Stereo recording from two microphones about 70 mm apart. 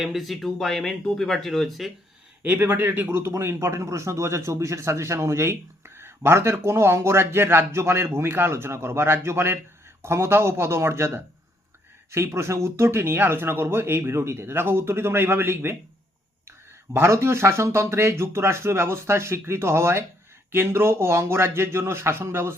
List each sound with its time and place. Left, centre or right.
0.0 s speech: centre
2.4 s speech: right